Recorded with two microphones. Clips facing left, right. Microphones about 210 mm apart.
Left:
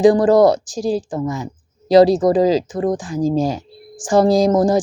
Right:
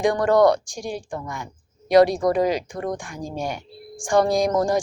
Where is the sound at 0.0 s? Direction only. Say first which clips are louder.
Left 6 dB; 30° left (ahead or behind).